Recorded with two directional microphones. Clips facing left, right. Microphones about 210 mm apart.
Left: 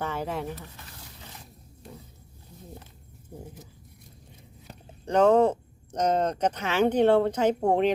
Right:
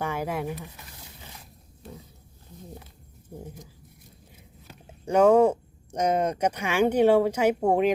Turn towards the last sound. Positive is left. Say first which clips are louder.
# right 1 dB
turn(degrees=-10)  # may be behind; listen again after turning